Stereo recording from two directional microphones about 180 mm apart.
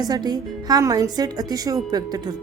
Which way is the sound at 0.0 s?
20° right (ahead or behind).